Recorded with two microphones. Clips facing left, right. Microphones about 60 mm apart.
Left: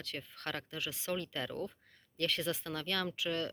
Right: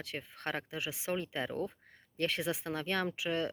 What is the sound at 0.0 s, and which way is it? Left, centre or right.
Speech, centre.